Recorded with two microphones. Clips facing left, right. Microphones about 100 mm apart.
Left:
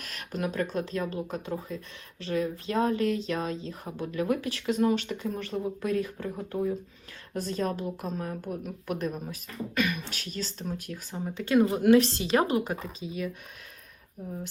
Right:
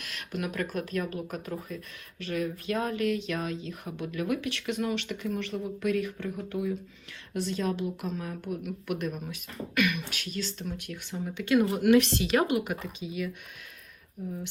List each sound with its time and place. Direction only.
0.0 s speech: 40° left (ahead or behind)